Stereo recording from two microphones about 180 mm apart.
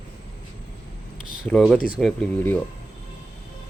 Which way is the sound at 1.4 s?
Centre (ahead or behind).